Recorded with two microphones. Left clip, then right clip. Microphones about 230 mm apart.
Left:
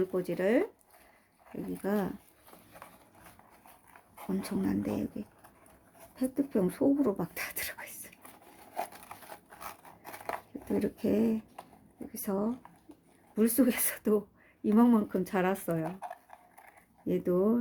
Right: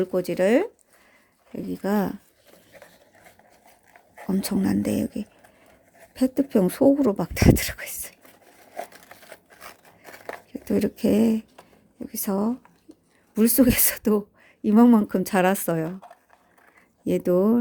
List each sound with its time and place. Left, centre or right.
0.0 s speech: right
1.8 s speech: right
4.3 s speech: right
9.3 s a sound: centre
10.5 s speech: right
17.1 s speech: right